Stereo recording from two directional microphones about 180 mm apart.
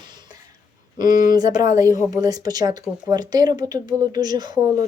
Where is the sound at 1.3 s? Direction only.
20° right (ahead or behind).